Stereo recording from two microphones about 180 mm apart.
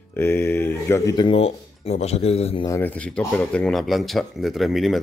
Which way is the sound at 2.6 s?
10° left (ahead or behind).